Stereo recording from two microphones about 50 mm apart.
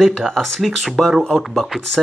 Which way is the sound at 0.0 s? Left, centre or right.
Centre.